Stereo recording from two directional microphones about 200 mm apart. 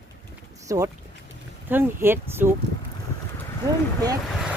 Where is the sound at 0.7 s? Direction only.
15° right (ahead or behind).